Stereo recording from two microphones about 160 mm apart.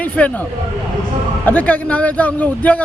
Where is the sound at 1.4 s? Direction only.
10° left (ahead or behind).